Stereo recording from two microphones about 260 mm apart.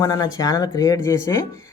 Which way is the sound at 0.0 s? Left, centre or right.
Centre.